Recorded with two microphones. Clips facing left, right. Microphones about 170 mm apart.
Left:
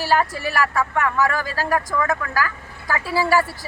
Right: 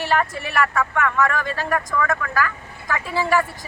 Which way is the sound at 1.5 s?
5° left (ahead or behind).